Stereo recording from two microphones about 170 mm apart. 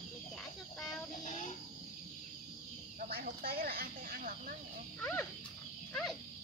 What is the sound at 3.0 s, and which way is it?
Speech, 60° right (ahead or behind).